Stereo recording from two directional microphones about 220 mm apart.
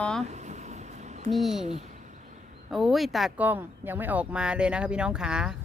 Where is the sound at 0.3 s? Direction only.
30° right (ahead or behind).